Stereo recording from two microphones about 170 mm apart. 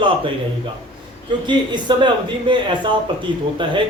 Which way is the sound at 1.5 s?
25° right (ahead or behind).